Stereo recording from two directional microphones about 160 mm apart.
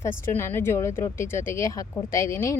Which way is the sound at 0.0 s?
15° left (ahead or behind).